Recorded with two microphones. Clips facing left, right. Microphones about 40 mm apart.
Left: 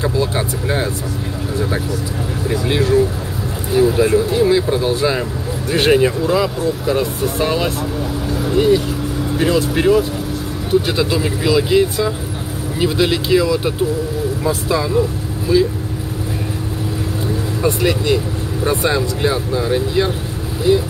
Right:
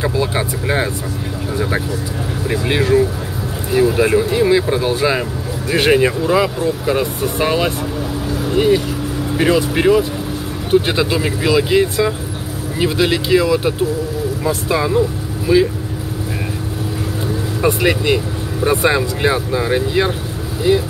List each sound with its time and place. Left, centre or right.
0.0 s speech: centre
2.4 s speech: right
17.6 s speech: right